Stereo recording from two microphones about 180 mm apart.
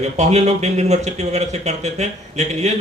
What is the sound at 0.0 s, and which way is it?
A man's voice, 40° right (ahead or behind).